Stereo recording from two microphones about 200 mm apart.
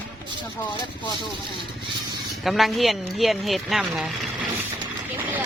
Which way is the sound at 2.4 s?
Centre (ahead or behind).